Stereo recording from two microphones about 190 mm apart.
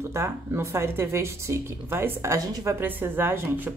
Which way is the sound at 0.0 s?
15° right (ahead or behind).